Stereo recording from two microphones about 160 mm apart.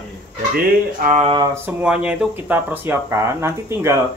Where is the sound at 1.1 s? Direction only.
40° right (ahead or behind).